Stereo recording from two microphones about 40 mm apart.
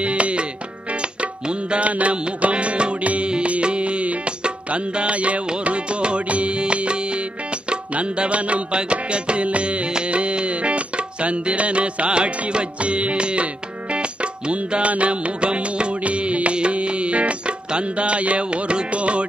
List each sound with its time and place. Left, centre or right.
0.0 s music: right